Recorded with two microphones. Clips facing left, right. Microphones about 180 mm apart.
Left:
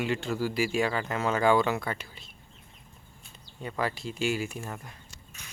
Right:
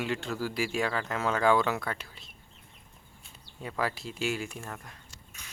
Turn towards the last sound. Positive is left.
turn(degrees=5)  # may be behind; listen again after turning